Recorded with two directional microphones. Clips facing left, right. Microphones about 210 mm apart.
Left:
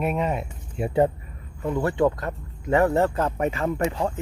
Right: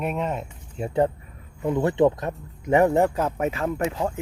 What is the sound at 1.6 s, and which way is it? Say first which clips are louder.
Speech: right 2 dB; 20° right (ahead or behind).